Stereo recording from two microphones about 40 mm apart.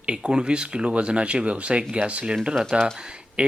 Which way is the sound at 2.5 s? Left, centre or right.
Centre.